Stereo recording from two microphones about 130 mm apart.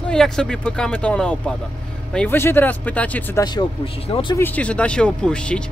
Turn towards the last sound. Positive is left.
turn(degrees=5)  # may be behind; listen again after turning